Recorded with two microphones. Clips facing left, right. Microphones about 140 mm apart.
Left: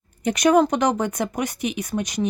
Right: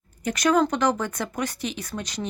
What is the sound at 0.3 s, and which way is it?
Speech, 20° left (ahead or behind).